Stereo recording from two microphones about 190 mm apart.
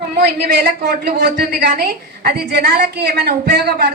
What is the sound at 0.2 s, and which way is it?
A woman's voice, 60° right (ahead or behind).